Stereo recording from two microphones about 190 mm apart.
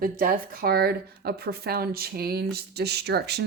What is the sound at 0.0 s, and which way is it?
Speech, 50° right (ahead or behind).